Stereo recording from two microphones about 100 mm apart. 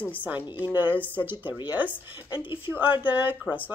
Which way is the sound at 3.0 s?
20° right (ahead or behind).